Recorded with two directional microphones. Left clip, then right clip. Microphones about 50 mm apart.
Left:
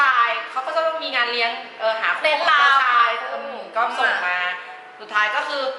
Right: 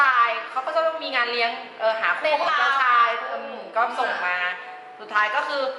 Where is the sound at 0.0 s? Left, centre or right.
Right.